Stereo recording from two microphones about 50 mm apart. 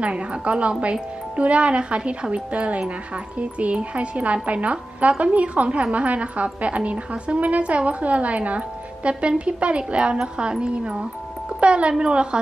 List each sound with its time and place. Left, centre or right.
0.0 s a woman's voice: right